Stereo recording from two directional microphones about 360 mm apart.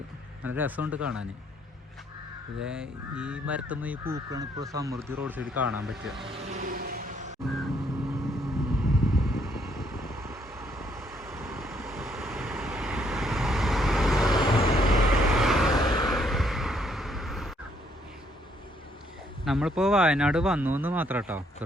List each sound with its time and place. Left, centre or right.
0.4 s speech: centre
2.6 s speech: centre
6.5 s a sound: right
7.4 s vehicle: centre
19.5 s speech: centre